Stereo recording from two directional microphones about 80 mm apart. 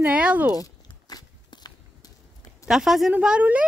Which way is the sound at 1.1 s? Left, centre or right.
Left.